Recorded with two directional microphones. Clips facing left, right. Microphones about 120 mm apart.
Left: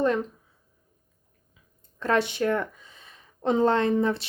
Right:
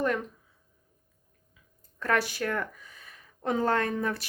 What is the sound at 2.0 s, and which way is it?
Speech, 25° left (ahead or behind).